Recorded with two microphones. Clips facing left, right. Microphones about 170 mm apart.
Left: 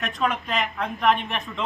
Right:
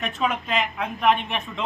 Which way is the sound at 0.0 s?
Centre (ahead or behind).